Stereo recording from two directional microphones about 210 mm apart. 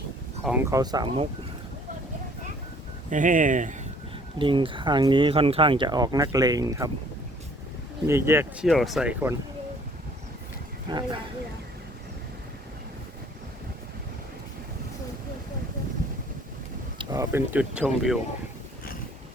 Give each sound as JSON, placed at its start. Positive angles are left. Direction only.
{"t": 0.4, "sound": "speech", "side_deg": -10}
{"t": 3.1, "sound": "speech", "side_deg": -40}
{"t": 4.4, "sound": "speech", "side_deg": -25}
{"t": 8.0, "sound": "speech", "side_deg": -10}
{"t": 8.6, "sound": "speech", "side_deg": 0}
{"t": 10.8, "sound": "speech", "side_deg": -20}
{"t": 17.0, "sound": "speech", "side_deg": -15}